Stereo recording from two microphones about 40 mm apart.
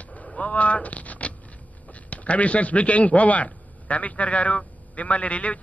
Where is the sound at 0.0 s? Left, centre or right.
Left.